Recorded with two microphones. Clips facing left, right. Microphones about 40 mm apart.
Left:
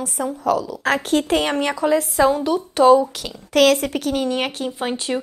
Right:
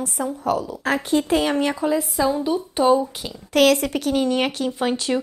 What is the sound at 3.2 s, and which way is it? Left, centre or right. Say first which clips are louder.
A woman's voice: left 1 dB; left.